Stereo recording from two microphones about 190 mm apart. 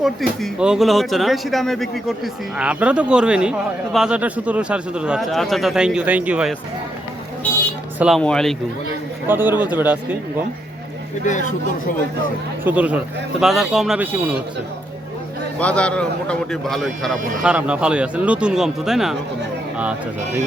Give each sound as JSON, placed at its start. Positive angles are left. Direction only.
{"t": 0.0, "sound": "a man's voice", "side_deg": 0}
{"t": 7.9, "sound": "a man's voice", "side_deg": 0}
{"t": 9.2, "sound": "speech", "side_deg": -10}
{"t": 11.3, "sound": "speech", "side_deg": 40}
{"t": 12.6, "sound": "a man's voice", "side_deg": -10}
{"t": 15.5, "sound": "a man's voice", "side_deg": 5}